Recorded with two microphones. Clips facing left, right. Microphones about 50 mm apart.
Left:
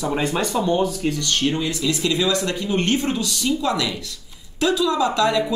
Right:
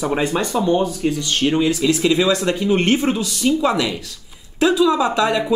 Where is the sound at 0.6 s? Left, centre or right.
Right.